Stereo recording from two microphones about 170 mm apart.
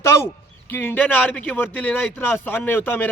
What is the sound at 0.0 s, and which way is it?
Speech, 15° left (ahead or behind).